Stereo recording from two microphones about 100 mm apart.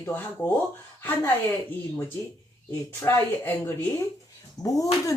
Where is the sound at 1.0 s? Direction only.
20° left (ahead or behind).